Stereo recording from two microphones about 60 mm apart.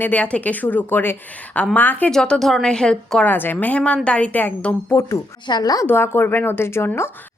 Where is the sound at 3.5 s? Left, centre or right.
Left.